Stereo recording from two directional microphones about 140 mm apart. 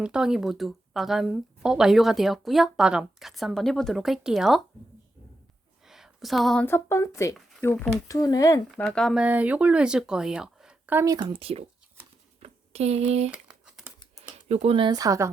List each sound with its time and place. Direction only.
0.0 s speech: 5° right (ahead or behind)
5.8 s a sound: 5° right (ahead or behind)
6.7 s a woman's voice: 15° left (ahead or behind)
8.7 s speech: 5° left (ahead or behind)
9.2 s speech: 10° right (ahead or behind)
11.0 s speech: 30° right (ahead or behind); by 11.7 s 45° right (ahead or behind)
12.4 s a sound: 50° right (ahead or behind)
13.3 s crumpling: 5° right (ahead or behind)
14.4 s speech: 50° right (ahead or behind)
14.9 s a woman's voice: 25° right (ahead or behind)